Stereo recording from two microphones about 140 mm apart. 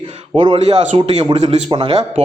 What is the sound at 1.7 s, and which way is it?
Speech, 40° right (ahead or behind).